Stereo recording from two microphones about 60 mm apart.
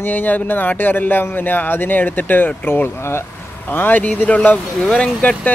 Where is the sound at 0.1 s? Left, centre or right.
Left.